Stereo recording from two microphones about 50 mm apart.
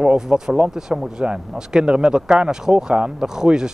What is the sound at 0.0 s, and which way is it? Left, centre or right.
Speech, centre.